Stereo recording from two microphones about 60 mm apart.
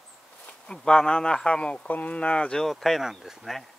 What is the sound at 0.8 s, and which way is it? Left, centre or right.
Speech, centre.